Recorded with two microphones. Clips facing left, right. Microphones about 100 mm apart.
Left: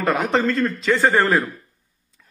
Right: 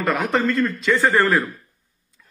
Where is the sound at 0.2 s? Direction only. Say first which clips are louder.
Even; 35° left (ahead or behind).